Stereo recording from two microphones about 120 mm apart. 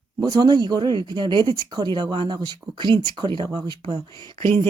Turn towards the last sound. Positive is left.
turn(degrees=-40)  # may be behind; listen again after turning